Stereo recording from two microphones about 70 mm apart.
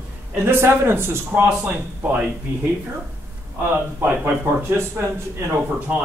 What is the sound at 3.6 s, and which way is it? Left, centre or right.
Speech, right.